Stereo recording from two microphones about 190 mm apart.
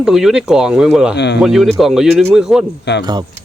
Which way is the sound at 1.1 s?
65° left (ahead or behind).